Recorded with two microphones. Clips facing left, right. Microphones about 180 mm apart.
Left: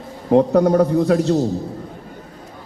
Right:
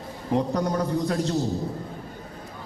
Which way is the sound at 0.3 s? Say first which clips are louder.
Left 11 dB; 90° left.